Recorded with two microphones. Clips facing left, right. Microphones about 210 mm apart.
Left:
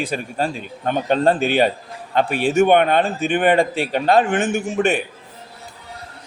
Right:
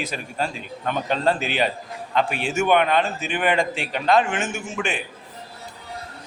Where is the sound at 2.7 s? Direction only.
50° left (ahead or behind).